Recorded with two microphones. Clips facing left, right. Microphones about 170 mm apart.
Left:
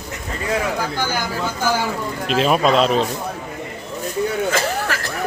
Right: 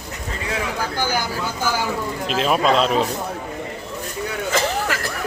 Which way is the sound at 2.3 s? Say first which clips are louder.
Left 2 dB; centre (ahead or behind).